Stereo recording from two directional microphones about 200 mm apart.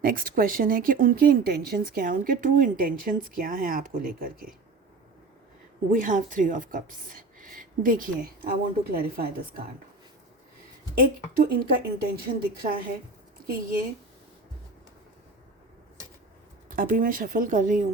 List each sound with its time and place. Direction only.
0.0 s speech: 45° right (ahead or behind)
5.9 s speech: 40° right (ahead or behind)
10.9 s speech: 45° right (ahead or behind)
16.6 s speech: 45° right (ahead or behind)